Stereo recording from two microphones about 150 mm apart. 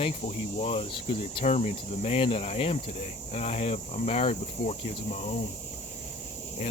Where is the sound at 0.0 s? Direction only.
45° left (ahead or behind).